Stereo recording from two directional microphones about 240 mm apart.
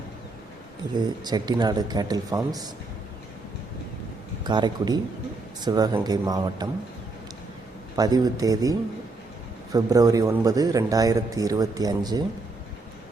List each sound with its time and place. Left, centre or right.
0.9 s a man's voice: centre
4.4 s a man's voice: centre
7.9 s a man's voice: centre